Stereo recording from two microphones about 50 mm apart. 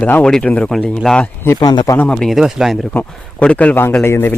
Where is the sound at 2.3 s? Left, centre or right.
Centre.